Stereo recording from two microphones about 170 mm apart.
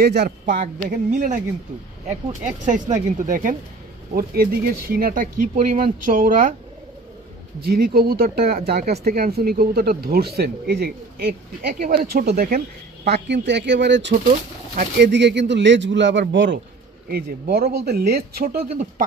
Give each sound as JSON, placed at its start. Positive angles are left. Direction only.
{"t": 0.0, "sound": "speech", "side_deg": -70}
{"t": 2.4, "sound": "speech", "side_deg": -45}
{"t": 7.6, "sound": "a man's voice", "side_deg": -65}
{"t": 17.1, "sound": "speech", "side_deg": -70}